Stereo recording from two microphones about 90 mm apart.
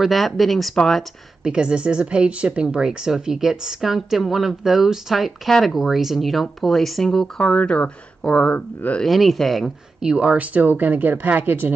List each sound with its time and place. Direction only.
0.0 s speech: centre (ahead or behind)
1.4 s speech: 10° right (ahead or behind); by 9.0 s 15° left (ahead or behind)
9.0 s speech: centre (ahead or behind)
10.1 s speech: 15° right (ahead or behind)